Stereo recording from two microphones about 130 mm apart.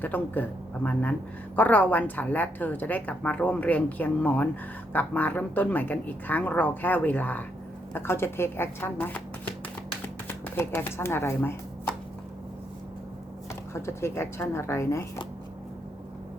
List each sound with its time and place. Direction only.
0.0 s a woman's voice: 15° left (ahead or behind)
13.7 s a woman's voice: 20° left (ahead or behind)